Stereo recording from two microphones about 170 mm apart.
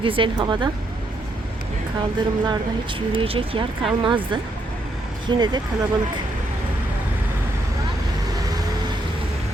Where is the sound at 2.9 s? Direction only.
35° right (ahead or behind).